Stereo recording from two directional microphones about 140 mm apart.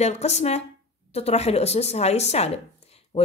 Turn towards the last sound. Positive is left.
turn(degrees=45)  # may be behind; listen again after turning